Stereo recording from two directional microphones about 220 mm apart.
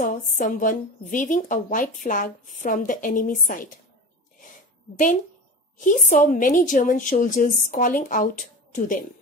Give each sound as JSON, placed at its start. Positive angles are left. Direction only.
{"t": 0.4, "sound": "a woman's voice", "side_deg": 35}
{"t": 5.8, "sound": "a woman's voice", "side_deg": 35}